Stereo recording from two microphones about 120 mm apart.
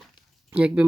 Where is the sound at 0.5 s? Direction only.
10° right (ahead or behind).